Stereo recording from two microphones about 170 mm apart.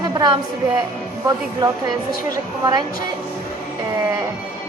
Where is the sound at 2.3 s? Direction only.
25° right (ahead or behind).